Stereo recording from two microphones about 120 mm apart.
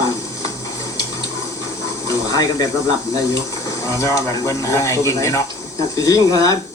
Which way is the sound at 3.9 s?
25° left (ahead or behind).